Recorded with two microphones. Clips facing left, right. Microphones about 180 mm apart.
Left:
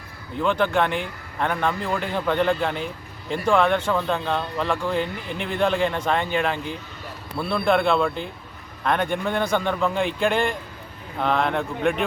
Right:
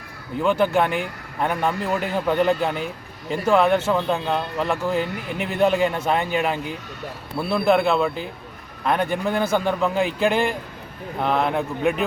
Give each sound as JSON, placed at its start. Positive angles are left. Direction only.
{"t": 0.4, "sound": "a man's voice", "side_deg": -10}